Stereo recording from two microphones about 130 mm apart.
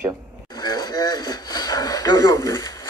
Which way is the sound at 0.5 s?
30° left (ahead or behind).